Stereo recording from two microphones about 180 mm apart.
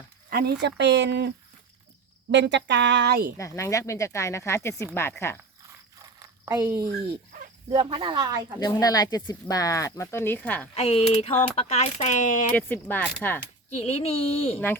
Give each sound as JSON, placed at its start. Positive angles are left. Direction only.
{"t": 0.3, "sound": "speech", "side_deg": -60}
{"t": 2.3, "sound": "speech", "side_deg": -80}
{"t": 3.3, "sound": "speech", "side_deg": 15}
{"t": 6.1, "sound": "a sound", "side_deg": -15}
{"t": 7.3, "sound": "a sound", "side_deg": -50}
{"t": 7.7, "sound": "speech", "side_deg": -30}
{"t": 8.5, "sound": "speech", "side_deg": 20}
{"t": 10.8, "sound": "speech", "side_deg": 35}
{"t": 12.5, "sound": "speech", "side_deg": 10}
{"t": 13.7, "sound": "speech", "side_deg": 35}